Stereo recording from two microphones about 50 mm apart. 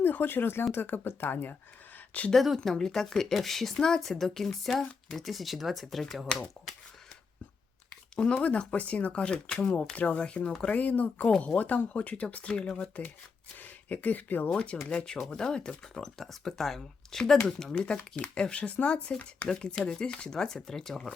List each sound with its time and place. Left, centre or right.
0.0 s speech: left
2.3 s speech: centre
8.1 s speech: centre
12.9 s speech: left
14.5 s speech: centre